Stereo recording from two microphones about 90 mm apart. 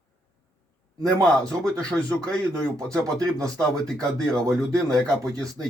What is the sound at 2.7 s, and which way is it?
Speech, 40° right (ahead or behind).